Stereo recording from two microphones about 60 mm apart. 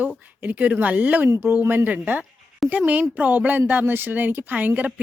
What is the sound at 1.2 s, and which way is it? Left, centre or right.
Speech, right.